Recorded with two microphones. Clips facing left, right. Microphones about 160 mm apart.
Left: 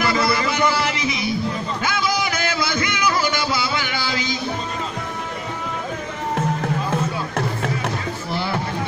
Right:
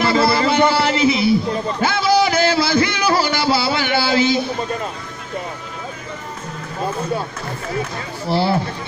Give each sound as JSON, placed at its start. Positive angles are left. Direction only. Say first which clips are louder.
{"t": 0.0, "sound": "music", "louder": "right 4 dB", "side_deg": -30}
{"t": 1.8, "sound": "a sound", "louder": "right 8 dB", "side_deg": -30}
{"t": 8.3, "sound": "music", "louder": "right 9 dB", "side_deg": -35}